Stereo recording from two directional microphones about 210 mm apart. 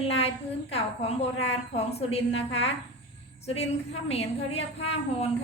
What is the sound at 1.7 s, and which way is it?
Speech, 30° left (ahead or behind).